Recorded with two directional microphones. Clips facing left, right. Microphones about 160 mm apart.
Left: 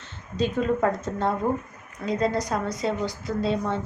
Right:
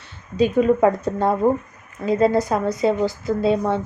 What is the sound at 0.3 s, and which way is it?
A woman's voice, 10° right (ahead or behind).